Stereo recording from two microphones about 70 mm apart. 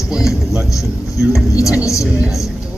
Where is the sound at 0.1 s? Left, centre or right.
Centre.